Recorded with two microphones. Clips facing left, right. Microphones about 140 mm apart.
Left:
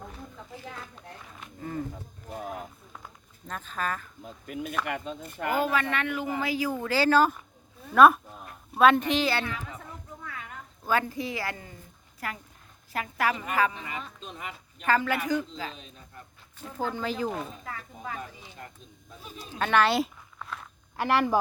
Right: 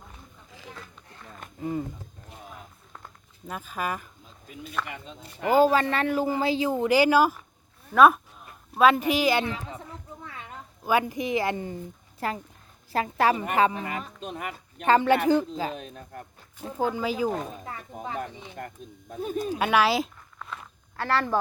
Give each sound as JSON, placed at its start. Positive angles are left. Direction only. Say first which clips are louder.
{"t": 2.3, "sound": "a sound", "louder": "left 10 dB", "side_deg": 55}
{"t": 3.4, "sound": "speech", "louder": "right 1 dB", "side_deg": -10}
{"t": 4.2, "sound": "speech", "louder": "left 7 dB", "side_deg": 60}
{"t": 5.5, "sound": "a man's voice", "louder": "right 7 dB", "side_deg": -35}
{"t": 9.5, "sound": "speech", "louder": "right 3 dB", "side_deg": -30}
{"t": 10.2, "sound": "a sound", "louder": "left 2 dB", "side_deg": -25}
{"t": 10.8, "sound": "a man's voice", "louder": "right 3 dB", "side_deg": -15}
{"t": 13.7, "sound": "speech", "louder": "right 5 dB", "side_deg": -50}
{"t": 14.8, "sound": "a man's voice", "louder": "right 6 dB", "side_deg": -25}
{"t": 15.7, "sound": "speech", "louder": "right 9 dB", "side_deg": -55}
{"t": 16.7, "sound": "speech", "louder": "right 4 dB", "side_deg": -15}
{"t": 18.2, "sound": "speech", "louder": "right 6 dB", "side_deg": -55}
{"t": 19.5, "sound": "speech", "louder": "right 1 dB", "side_deg": -10}
{"t": 20.9, "sound": "speech", "louder": "left 2 dB", "side_deg": 15}